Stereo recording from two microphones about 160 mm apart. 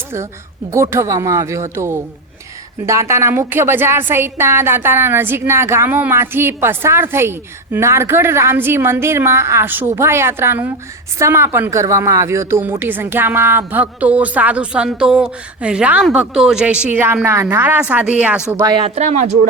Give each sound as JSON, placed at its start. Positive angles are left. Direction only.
{"t": 0.7, "sound": "a woman's voice", "side_deg": -15}
{"t": 18.5, "sound": "speech", "side_deg": -25}
{"t": 18.9, "sound": "speech", "side_deg": -45}